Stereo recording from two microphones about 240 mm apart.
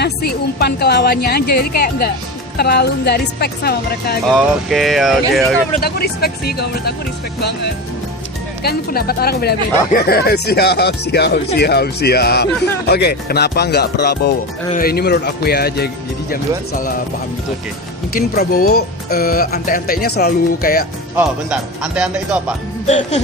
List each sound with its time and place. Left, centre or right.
0.0 s speech: left
4.3 s speech: centre
5.8 s speech: left
8.6 s speech: left
18.1 s speech: left
21.2 s speech: centre
22.9 s music: left